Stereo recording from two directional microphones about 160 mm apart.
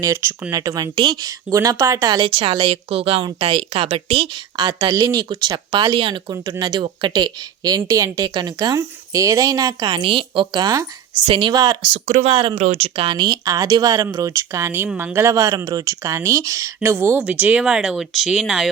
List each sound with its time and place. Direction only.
0.5 s speech: 20° right (ahead or behind)
11.8 s speech: 35° right (ahead or behind)
12.5 s speech: 40° right (ahead or behind); by 18.7 s 5° right (ahead or behind)